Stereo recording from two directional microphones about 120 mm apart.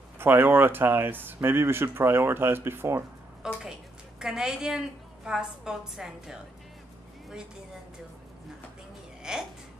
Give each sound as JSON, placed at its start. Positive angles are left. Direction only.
{"t": 0.2, "sound": "speech", "side_deg": -15}
{"t": 3.4, "sound": "a woman's voice", "side_deg": -5}
{"t": 9.3, "sound": "a woman's voice", "side_deg": -5}